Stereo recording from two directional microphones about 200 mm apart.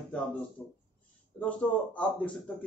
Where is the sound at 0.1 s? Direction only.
5° left (ahead or behind).